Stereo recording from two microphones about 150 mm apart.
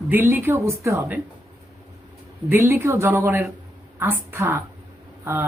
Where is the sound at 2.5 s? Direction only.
15° right (ahead or behind).